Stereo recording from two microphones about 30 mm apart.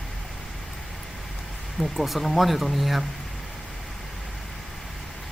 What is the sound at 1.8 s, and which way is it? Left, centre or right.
Speech, centre.